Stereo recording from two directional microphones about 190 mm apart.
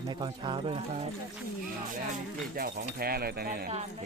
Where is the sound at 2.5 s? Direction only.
50° right (ahead or behind).